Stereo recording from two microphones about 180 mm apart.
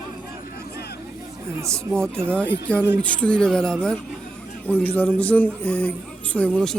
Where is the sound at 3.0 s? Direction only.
5° left (ahead or behind).